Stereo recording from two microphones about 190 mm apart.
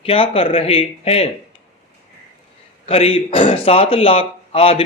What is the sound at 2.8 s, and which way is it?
A man's voice, 30° left (ahead or behind).